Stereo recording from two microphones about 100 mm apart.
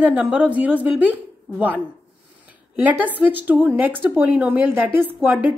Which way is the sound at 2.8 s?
15° right (ahead or behind).